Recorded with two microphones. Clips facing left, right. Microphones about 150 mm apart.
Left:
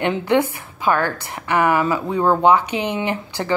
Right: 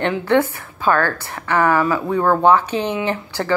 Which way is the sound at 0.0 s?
15° left (ahead or behind).